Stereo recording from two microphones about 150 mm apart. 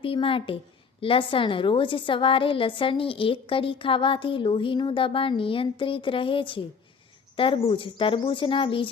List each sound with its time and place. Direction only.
0.0 s a woman's voice: 35° left (ahead or behind)